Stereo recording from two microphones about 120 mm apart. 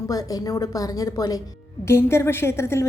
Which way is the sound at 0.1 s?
30° left (ahead or behind).